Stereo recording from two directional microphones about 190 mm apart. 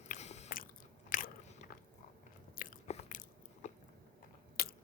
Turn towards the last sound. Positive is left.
turn(degrees=50)  # may be behind; listen again after turning